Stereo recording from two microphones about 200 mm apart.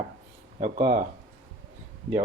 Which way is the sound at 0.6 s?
35° right (ahead or behind).